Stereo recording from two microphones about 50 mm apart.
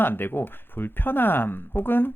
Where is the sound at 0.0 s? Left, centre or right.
Left.